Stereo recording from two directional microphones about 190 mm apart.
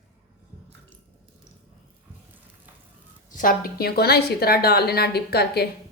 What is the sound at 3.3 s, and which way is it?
Speech, 50° left (ahead or behind).